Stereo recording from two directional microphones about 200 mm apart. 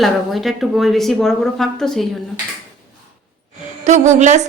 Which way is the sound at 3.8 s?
35° right (ahead or behind).